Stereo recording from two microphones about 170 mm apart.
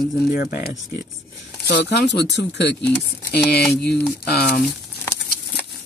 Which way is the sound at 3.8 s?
70° left (ahead or behind).